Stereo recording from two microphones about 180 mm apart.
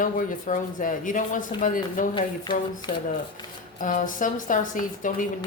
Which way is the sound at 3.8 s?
45° left (ahead or behind).